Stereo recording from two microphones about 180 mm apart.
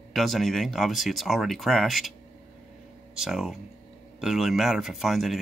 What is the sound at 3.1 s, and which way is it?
Speech, 5° right (ahead or behind).